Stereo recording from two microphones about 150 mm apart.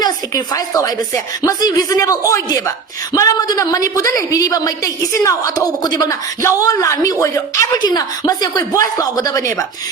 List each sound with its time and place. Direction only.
0.0 s a woman's voice: 25° left (ahead or behind)